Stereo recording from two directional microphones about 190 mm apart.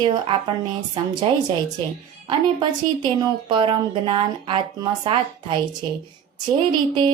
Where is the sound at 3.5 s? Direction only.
25° right (ahead or behind).